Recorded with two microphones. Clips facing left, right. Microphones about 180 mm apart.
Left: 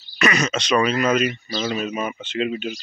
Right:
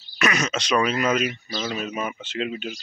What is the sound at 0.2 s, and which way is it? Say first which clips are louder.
Speech: left 3 dB; 5° right (ahead or behind).